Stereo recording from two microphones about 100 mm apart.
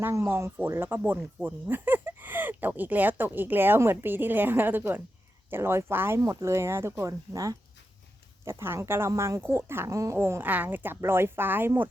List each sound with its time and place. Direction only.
0.0 s speech: 25° right (ahead or behind)